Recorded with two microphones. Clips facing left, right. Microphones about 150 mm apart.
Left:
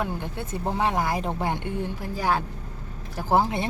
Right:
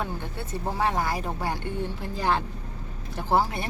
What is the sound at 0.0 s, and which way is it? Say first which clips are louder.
Speech: left 3 dB; 15° left (ahead or behind).